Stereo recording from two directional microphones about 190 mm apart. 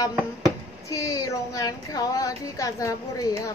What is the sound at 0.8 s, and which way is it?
A woman's voice, 15° left (ahead or behind).